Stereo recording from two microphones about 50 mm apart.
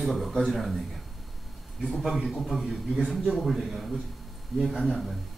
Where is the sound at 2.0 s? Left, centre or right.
Centre.